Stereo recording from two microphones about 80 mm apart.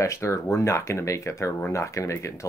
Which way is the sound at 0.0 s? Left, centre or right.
Left.